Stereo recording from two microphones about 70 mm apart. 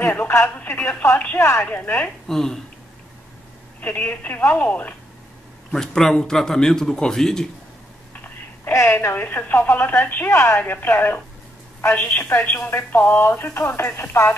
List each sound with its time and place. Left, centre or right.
0.0 s speech: left
0.8 s a woman's voice: left
2.2 s a man's voice: centre
3.8 s speech: left
5.7 s a man's voice: centre
8.1 s a sound: left
8.8 s a woman's voice: left